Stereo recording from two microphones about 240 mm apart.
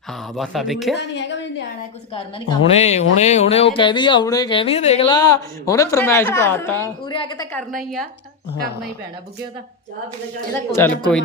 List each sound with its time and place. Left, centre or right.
0.1 s speech: centre
0.9 s a sound: left
2.1 s speech: left
7.5 s speech: centre
10.5 s speech: centre